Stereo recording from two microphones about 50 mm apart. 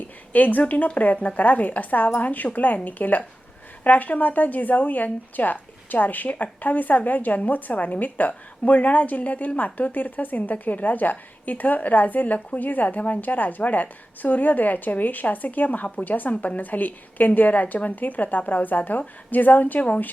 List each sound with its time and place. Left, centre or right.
0.3 s speech: left